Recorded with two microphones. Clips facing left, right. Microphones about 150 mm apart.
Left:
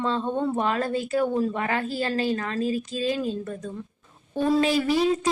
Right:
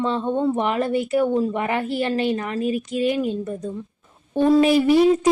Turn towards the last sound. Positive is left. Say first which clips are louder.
# right 6 dB
turn(degrees=-25)  # may be behind; listen again after turning